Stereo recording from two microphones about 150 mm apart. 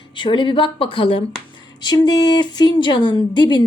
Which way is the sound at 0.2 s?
35° left (ahead or behind).